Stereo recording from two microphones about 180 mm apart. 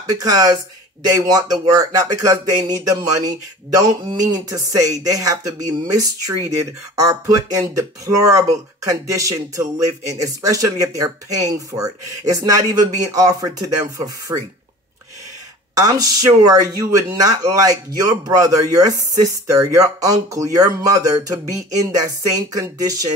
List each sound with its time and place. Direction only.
0.1 s speech: 20° right (ahead or behind)
8.8 s speech: 20° right (ahead or behind)
15.7 s speech: 20° right (ahead or behind)